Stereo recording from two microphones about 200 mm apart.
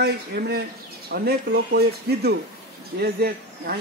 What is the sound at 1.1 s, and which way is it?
A man's voice, 50° right (ahead or behind).